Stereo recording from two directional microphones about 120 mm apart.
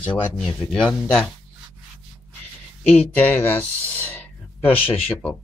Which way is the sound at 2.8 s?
15° left (ahead or behind).